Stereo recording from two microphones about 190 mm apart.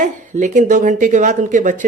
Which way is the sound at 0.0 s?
40° right (ahead or behind).